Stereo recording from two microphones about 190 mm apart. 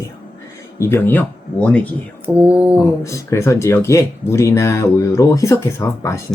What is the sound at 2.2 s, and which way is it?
Speech, 5° right (ahead or behind).